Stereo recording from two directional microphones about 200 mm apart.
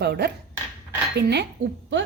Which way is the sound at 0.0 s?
55° right (ahead or behind).